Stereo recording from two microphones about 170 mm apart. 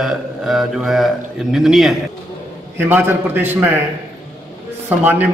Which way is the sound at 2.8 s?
15° right (ahead or behind).